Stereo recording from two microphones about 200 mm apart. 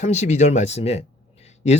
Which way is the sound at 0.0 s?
35° left (ahead or behind).